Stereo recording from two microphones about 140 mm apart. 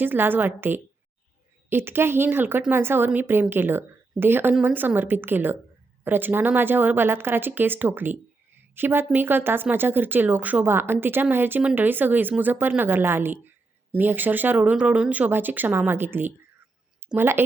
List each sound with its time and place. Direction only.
0.0 s a woman's voice: 15° right (ahead or behind)